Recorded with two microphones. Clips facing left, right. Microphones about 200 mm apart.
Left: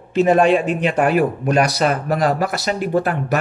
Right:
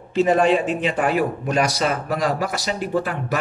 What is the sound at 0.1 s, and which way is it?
A man's voice, 60° left (ahead or behind).